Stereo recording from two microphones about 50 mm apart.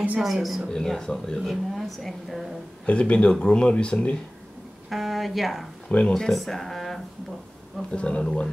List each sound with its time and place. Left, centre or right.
0.2 s a woman's voice: centre
0.7 s a woman's voice: centre
2.9 s speech: left
4.8 s a woman's voice: centre
5.9 s speech: centre
6.3 s a woman's voice: centre
7.9 s speech: left